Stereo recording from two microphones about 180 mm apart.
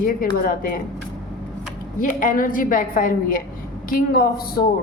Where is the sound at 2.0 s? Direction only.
45° left (ahead or behind).